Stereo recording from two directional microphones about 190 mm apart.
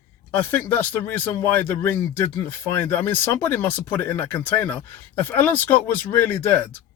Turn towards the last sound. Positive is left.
turn(degrees=10)  # may be behind; listen again after turning